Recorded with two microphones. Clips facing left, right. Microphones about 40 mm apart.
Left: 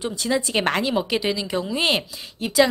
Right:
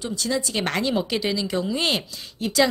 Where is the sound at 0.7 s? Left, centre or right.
Centre.